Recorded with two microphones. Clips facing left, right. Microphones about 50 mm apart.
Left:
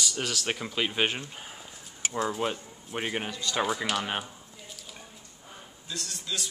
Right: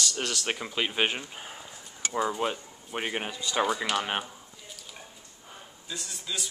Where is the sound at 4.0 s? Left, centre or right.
Centre.